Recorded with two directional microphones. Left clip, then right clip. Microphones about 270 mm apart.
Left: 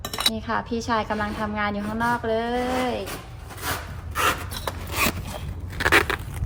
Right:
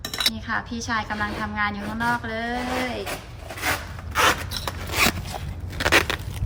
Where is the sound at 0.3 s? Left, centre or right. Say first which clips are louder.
Left 2 dB; centre.